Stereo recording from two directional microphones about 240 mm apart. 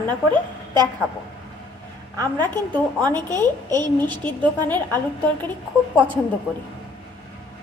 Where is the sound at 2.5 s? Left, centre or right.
Centre.